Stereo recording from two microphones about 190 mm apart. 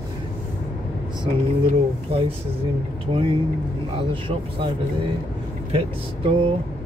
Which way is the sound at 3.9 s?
25° right (ahead or behind).